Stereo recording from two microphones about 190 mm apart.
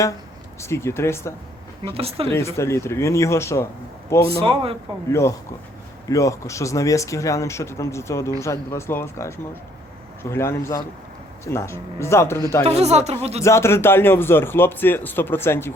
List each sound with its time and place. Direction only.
0.6 s a man's voice: 15° left (ahead or behind)
1.8 s speech: 30° right (ahead or behind)
2.6 s a man's voice: 15° left (ahead or behind)
4.3 s speech: 30° right (ahead or behind)
6.1 s a man's voice: 15° left (ahead or behind)
12.6 s speech: 35° right (ahead or behind)
13.4 s a man's voice: 15° left (ahead or behind)